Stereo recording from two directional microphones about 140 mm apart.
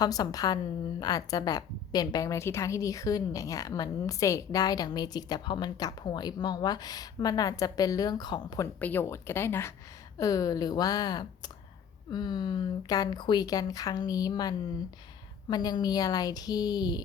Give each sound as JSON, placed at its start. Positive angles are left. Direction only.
{"t": 0.0, "sound": "a woman's voice", "side_deg": 25}
{"t": 8.6, "sound": "a woman's voice", "side_deg": 15}